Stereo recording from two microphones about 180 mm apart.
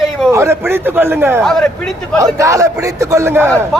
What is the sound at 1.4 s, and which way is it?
Speech, 5° left (ahead or behind).